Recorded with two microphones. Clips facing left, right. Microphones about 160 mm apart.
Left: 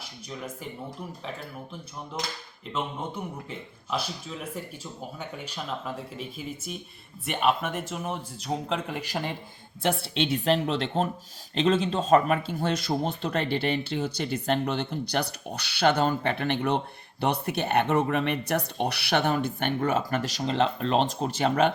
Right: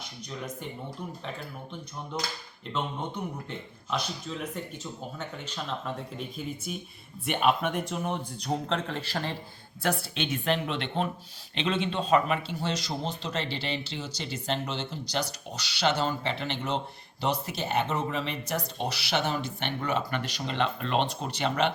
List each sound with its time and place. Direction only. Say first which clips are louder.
0.3 s speech: even; 5° left (ahead or behind)
2.1 s speech: even; 5° left (ahead or behind)
9.8 s speech: left 3 dB; 25° left (ahead or behind); by 21.7 s 45° left (ahead or behind)